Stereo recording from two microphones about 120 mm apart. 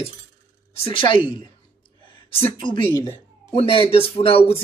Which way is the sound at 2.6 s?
40° left (ahead or behind).